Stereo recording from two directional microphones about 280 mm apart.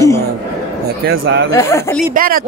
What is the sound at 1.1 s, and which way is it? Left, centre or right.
Speech, right.